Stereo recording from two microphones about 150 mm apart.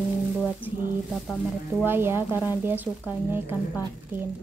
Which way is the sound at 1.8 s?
15° right (ahead or behind).